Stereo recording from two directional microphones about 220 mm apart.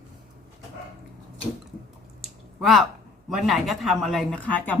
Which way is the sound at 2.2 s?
Centre (ahead or behind).